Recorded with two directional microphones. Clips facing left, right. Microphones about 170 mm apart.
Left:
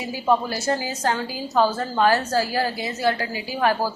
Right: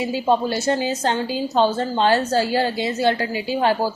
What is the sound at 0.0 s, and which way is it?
A woman's voice, 25° right (ahead or behind).